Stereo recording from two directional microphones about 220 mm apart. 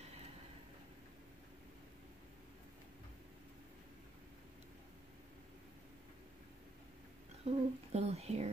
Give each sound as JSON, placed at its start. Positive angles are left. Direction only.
{"t": 7.4, "sound": "speech", "side_deg": -30}